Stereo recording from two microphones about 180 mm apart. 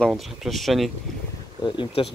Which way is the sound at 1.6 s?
25° left (ahead or behind).